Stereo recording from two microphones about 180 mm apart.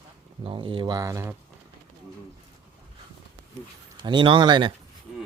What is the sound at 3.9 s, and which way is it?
Speech, 25° right (ahead or behind).